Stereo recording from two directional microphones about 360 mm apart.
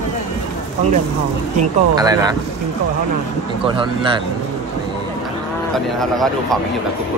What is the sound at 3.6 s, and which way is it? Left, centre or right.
Speech, centre.